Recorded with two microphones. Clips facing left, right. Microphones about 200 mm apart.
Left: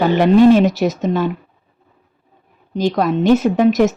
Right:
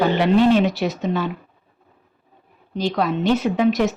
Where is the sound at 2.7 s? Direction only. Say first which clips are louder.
Left 5 dB; 45° left (ahead or behind).